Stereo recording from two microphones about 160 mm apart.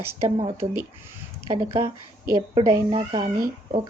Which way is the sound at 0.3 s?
40° right (ahead or behind).